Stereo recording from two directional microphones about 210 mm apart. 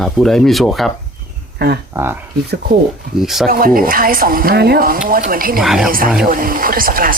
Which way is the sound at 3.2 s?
Centre (ahead or behind).